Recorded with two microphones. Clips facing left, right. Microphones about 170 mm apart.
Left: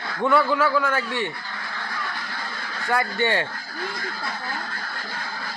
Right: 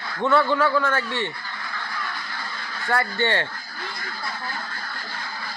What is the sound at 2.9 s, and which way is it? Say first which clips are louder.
Speech: even; 15° left (ahead or behind).